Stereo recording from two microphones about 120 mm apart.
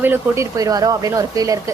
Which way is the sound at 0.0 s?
15° right (ahead or behind).